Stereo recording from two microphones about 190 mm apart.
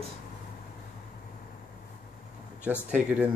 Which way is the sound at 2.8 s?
5° right (ahead or behind).